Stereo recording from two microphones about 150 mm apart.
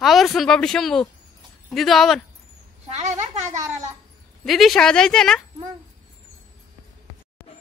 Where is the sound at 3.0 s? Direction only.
50° right (ahead or behind).